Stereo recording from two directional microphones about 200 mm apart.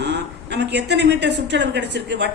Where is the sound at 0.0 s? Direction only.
60° right (ahead or behind).